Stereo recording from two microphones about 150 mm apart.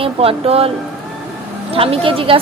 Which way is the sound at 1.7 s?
40° right (ahead or behind).